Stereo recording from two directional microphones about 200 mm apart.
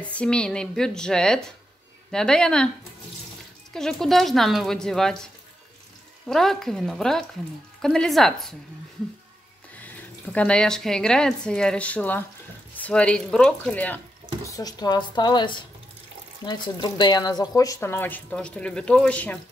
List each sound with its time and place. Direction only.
0.0 s a woman's voice: 5° left (ahead or behind)
3.7 s a woman's voice: centre (ahead or behind)
6.2 s a woman's voice: centre (ahead or behind)
9.8 s a woman's voice: 10° left (ahead or behind)
14.4 s speech: 20° left (ahead or behind)